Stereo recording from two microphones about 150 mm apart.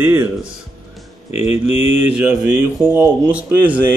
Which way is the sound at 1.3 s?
45° left (ahead or behind).